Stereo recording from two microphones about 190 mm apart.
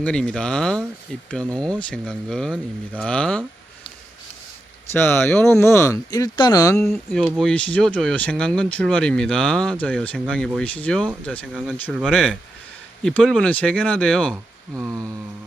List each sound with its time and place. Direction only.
0.0 s speech: 5° left (ahead or behind)
4.9 s speech: 10° left (ahead or behind)
6.7 s speech: centre (ahead or behind)
14.8 s a sound: 15° right (ahead or behind)